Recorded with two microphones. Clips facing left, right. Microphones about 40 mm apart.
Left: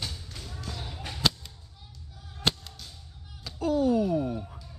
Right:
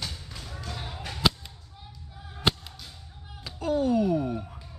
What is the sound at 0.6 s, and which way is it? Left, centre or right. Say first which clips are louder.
Whip: right 2 dB; right.